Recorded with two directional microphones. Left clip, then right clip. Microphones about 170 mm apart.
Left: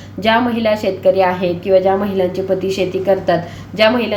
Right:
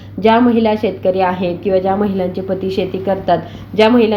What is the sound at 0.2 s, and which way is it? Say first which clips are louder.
A woman's voice: right 3 dB; 40° right (ahead or behind).